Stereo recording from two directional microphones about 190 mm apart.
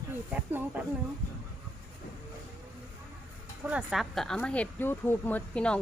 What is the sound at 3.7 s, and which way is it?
Speech, 5° right (ahead or behind).